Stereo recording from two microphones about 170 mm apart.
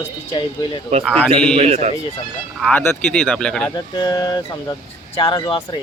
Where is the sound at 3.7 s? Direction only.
25° left (ahead or behind).